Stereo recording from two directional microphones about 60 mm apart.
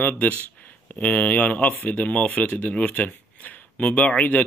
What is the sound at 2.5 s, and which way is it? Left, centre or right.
Speech, left.